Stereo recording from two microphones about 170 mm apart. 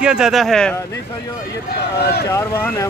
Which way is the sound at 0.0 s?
5° right (ahead or behind).